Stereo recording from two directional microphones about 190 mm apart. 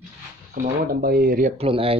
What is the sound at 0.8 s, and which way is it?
Speech, 50° right (ahead or behind).